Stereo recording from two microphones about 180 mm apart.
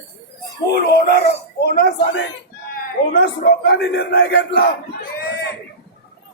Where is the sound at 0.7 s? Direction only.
60° left (ahead or behind); by 2.3 s 80° left.